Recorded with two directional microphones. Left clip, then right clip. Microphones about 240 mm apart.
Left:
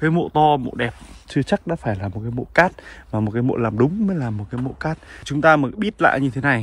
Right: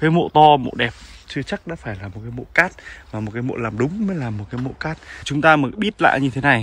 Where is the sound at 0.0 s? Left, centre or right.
Centre.